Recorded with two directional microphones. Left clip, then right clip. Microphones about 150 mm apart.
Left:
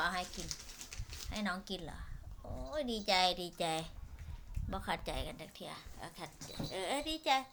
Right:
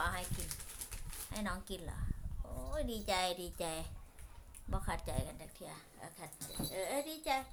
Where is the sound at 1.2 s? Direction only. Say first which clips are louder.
Left 3 dB; 15° left (ahead or behind).